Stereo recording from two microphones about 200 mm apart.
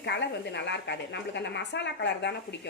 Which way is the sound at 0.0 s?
60° left (ahead or behind).